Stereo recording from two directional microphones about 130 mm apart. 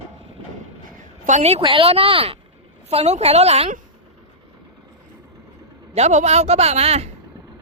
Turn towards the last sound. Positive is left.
turn(degrees=-55)  # may be behind; listen again after turning